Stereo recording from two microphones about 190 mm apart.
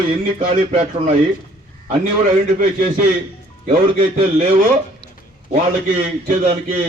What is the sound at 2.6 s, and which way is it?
Speech, 45° right (ahead or behind).